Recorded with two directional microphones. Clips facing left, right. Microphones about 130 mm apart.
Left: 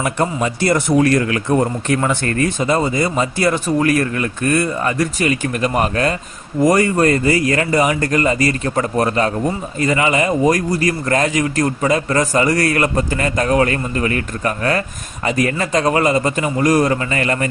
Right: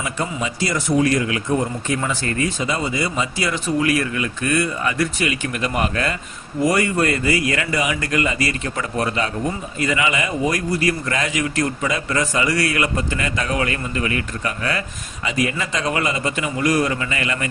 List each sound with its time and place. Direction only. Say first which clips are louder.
0.0 s a man's voice: left 6 dB; 60° left (ahead or behind); by 17.5 s 40° left (ahead or behind)